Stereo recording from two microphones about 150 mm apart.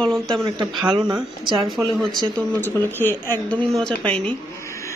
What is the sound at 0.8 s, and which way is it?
Speech, 30° right (ahead or behind).